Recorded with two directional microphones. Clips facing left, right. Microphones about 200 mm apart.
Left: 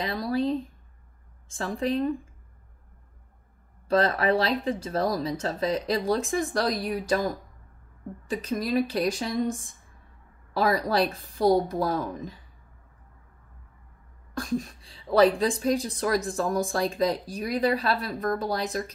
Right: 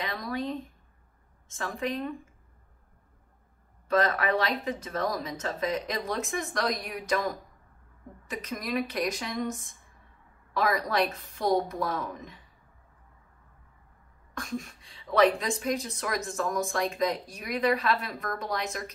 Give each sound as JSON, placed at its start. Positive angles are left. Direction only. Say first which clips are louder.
{"t": 0.0, "sound": "a sound", "louder": "left 6 dB", "side_deg": 30}
{"t": 1.5, "sound": "a woman's voice", "louder": "left 5 dB", "side_deg": 30}
{"t": 3.8, "sound": "a woman's voice", "louder": "left 3 dB", "side_deg": 30}
{"t": 14.3, "sound": "a woman's voice", "louder": "left 6 dB", "side_deg": 35}